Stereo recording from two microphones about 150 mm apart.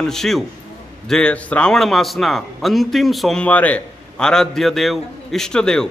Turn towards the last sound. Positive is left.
turn(degrees=5)  # may be behind; listen again after turning